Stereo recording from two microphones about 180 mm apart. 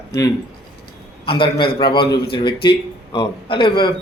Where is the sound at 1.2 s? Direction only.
30° left (ahead or behind).